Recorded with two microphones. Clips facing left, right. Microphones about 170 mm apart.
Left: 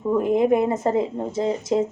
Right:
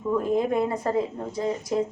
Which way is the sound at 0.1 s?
20° left (ahead or behind).